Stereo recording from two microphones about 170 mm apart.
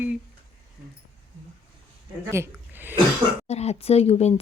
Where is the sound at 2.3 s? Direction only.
15° right (ahead or behind).